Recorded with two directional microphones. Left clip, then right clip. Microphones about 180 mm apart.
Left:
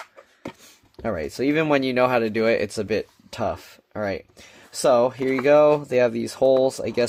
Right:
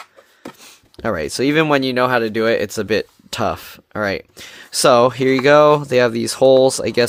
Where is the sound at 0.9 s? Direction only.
40° right (ahead or behind).